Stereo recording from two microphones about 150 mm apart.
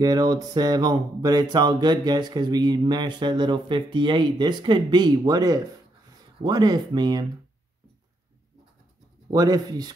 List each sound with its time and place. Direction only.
0.0 s mantra: 25° right (ahead or behind)
9.3 s mantra: 25° right (ahead or behind)